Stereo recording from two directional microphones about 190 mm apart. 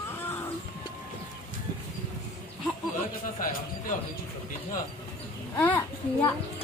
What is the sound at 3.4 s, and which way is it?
Speech, 45° left (ahead or behind).